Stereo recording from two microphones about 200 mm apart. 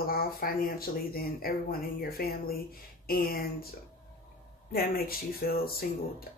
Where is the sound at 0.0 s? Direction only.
50° left (ahead or behind).